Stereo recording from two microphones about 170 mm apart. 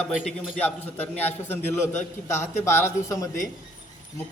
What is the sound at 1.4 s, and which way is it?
A man's voice, 15° left (ahead or behind).